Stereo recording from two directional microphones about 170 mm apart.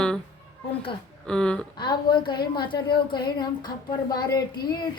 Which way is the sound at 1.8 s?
25° left (ahead or behind).